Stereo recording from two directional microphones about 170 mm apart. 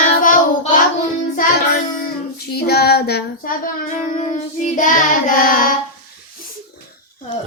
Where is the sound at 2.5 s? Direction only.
70° left (ahead or behind).